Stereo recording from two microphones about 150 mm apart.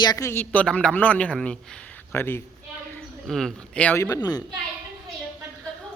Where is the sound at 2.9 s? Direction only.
5° left (ahead or behind).